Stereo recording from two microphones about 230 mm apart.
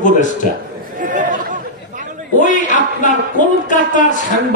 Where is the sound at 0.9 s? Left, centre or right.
Right.